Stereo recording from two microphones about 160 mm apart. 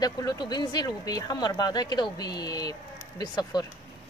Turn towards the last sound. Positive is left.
turn(degrees=25)  # may be behind; listen again after turning